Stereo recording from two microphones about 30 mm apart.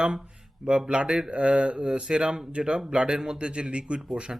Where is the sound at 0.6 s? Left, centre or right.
Right.